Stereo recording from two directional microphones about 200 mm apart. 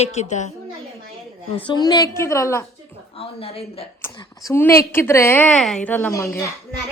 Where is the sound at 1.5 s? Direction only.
20° left (ahead or behind).